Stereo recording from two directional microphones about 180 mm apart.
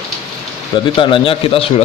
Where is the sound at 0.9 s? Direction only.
30° left (ahead or behind).